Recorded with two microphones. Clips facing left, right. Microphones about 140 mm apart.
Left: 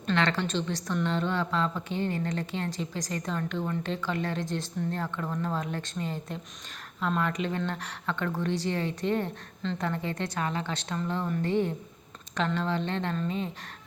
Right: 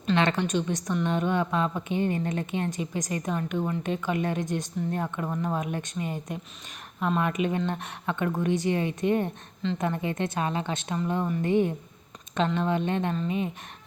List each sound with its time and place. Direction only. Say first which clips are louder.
0.2 s a woman's voice: right 2 dB; 20° right (ahead or behind)